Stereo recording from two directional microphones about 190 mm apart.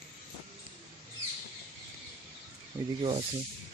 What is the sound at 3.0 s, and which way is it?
Speech, 30° right (ahead or behind).